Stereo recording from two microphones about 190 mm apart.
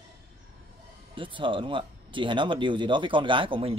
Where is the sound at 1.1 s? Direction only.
25° right (ahead or behind).